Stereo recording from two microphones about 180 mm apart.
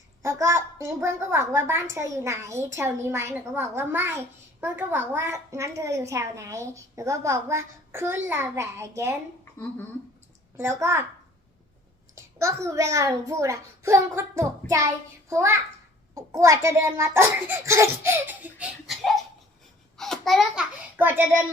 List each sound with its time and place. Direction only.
0.2 s a woman's voice: 15° right (ahead or behind)
9.4 s speech: 15° left (ahead or behind)
10.6 s a woman's voice: 15° right (ahead or behind)
12.1 s a woman's voice: 15° right (ahead or behind)